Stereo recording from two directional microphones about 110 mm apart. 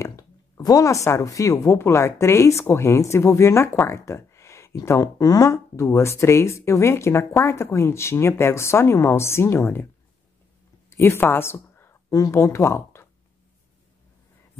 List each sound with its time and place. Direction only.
0.0 s speech: 30° left (ahead or behind)
10.9 s speech: 25° left (ahead or behind)